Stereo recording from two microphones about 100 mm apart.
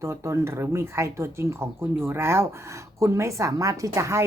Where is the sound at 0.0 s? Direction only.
30° right (ahead or behind).